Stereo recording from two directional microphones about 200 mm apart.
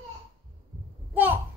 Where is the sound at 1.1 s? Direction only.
10° right (ahead or behind).